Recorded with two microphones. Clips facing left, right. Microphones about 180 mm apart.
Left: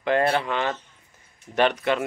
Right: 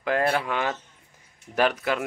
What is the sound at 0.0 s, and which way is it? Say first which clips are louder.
Speech: left 2 dB; 5° right (ahead or behind).